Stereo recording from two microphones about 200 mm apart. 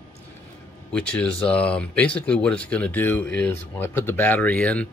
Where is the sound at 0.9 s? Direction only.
5° left (ahead or behind).